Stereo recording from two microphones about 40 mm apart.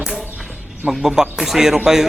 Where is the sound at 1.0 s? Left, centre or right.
Centre.